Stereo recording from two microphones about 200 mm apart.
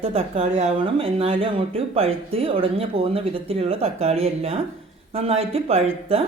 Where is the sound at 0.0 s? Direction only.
30° right (ahead or behind).